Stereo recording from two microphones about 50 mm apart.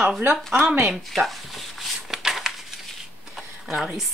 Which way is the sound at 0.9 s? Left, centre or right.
Centre.